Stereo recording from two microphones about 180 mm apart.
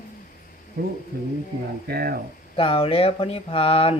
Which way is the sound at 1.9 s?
55° right (ahead or behind).